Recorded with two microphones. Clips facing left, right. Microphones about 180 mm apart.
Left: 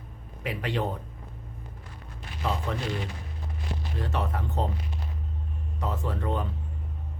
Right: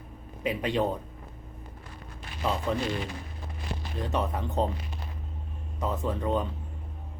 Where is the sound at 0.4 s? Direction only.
20° right (ahead or behind).